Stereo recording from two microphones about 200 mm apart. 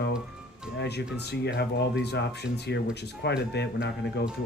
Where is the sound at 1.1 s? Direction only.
55° left (ahead or behind).